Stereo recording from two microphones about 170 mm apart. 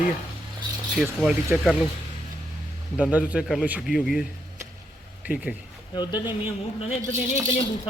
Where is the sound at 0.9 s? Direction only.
5° right (ahead or behind).